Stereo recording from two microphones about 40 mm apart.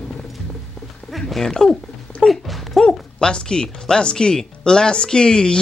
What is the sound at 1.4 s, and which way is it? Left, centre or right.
Speech, centre.